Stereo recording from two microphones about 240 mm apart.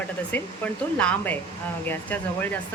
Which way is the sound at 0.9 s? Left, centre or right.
Centre.